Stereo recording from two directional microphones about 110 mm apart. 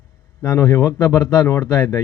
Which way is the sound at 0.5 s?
30° left (ahead or behind).